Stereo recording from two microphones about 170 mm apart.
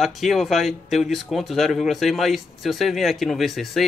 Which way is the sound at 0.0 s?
Centre (ahead or behind).